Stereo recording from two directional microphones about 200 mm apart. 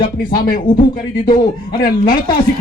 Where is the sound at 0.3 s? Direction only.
45° left (ahead or behind).